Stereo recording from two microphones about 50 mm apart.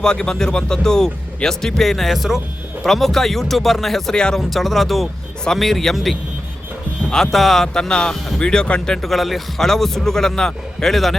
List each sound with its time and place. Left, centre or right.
0.0 s speech: centre
4.1 s speech: centre
4.4 s speech: centre
7.3 s speech: centre
9.0 s speech: centre